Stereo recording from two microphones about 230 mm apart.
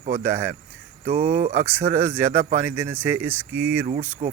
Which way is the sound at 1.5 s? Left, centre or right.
Centre.